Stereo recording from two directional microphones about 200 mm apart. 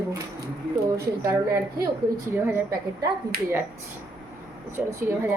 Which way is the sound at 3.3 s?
50° right (ahead or behind).